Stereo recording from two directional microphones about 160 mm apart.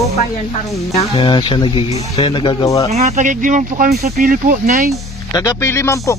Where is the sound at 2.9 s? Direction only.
45° right (ahead or behind).